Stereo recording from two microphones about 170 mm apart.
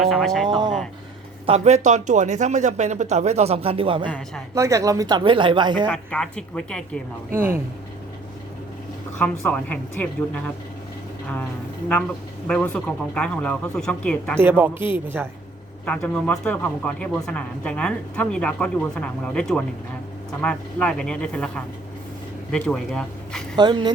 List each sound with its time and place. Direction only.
0.0 s a woman's voice: centre (ahead or behind)
0.4 s speech: 25° right (ahead or behind)
1.5 s speech: 40° right (ahead or behind)
4.5 s speech: 20° right (ahead or behind)
5.9 s a woman's voice: 5° left (ahead or behind)
9.1 s a woman's voice: 10° left (ahead or behind)
12.5 s a woman's voice: 5° left (ahead or behind)
14.3 s speech: 10° right (ahead or behind)
15.9 s a woman's voice: 5° left (ahead or behind)
23.6 s speech: 25° right (ahead or behind)